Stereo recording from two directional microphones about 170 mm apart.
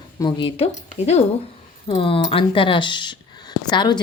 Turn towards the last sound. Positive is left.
turn(degrees=25)  # may be behind; listen again after turning